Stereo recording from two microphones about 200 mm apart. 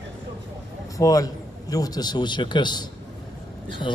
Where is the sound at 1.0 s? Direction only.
20° left (ahead or behind).